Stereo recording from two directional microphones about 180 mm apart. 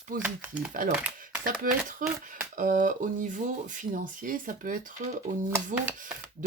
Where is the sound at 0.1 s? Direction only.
45° right (ahead or behind).